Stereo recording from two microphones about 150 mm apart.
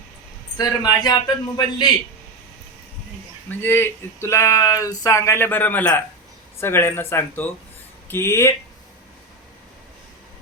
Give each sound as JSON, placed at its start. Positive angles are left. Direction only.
{"t": 0.5, "sound": "a man's voice", "side_deg": 25}
{"t": 3.5, "sound": "speech", "side_deg": 15}